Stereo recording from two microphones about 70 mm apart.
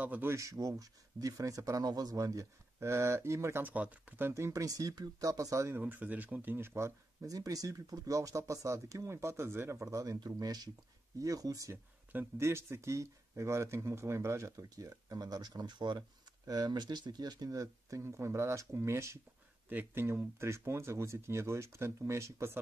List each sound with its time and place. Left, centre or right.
0.0 s speech: right
0.3 s speech: right
3.6 s speech: right
4.3 s speech: right
5.8 s speech: right
7.2 s speech: right
10.2 s speech: right
11.1 s speech: right
11.7 s speech: right
16.4 s speech: right
19.7 s speech: right